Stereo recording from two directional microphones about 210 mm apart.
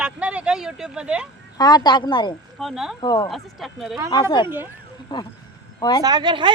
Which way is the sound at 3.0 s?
20° left (ahead or behind).